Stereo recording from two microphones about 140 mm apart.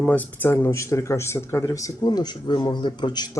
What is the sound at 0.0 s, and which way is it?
Speech, 10° left (ahead or behind).